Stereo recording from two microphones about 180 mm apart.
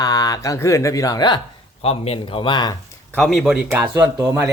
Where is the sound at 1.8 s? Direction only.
35° left (ahead or behind).